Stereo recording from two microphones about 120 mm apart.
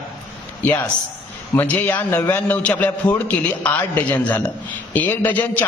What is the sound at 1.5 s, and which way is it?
A man's voice, 15° left (ahead or behind).